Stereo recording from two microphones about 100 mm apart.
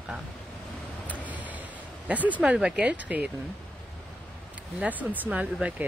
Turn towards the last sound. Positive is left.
turn(degrees=-15)  # may be behind; listen again after turning